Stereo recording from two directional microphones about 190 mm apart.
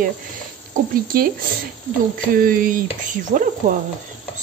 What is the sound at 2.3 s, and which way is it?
A woman's voice, 45° right (ahead or behind).